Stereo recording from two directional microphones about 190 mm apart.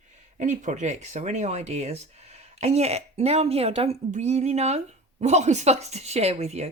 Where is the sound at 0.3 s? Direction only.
40° right (ahead or behind).